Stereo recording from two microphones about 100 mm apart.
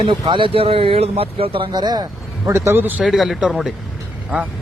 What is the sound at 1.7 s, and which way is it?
Speech, 45° right (ahead or behind).